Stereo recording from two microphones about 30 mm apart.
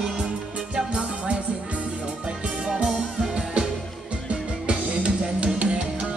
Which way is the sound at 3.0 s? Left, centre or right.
Right.